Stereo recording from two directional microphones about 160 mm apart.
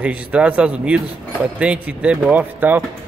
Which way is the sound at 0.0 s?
5° right (ahead or behind).